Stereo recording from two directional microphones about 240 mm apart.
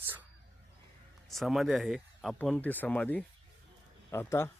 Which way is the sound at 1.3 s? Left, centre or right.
Centre.